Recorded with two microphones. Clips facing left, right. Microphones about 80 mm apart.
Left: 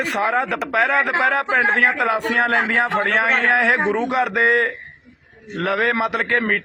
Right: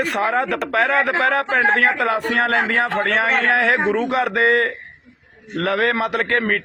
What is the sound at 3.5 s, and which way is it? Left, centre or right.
Speech, centre.